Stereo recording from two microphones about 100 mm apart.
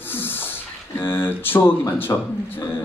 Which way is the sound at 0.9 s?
20° left (ahead or behind).